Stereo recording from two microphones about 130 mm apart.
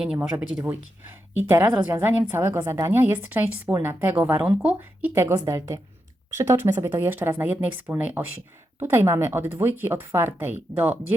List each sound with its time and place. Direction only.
0.2 s a woman's voice: 10° right (ahead or behind)